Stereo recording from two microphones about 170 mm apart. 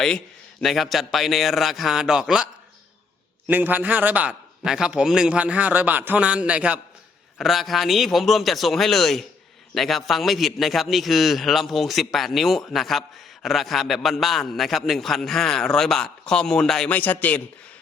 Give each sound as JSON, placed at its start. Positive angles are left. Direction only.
{"t": 0.6, "sound": "a man's voice", "side_deg": 0}